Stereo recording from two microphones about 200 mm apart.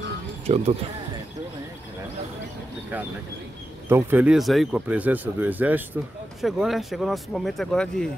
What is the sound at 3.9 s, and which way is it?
Speech, 10° right (ahead or behind).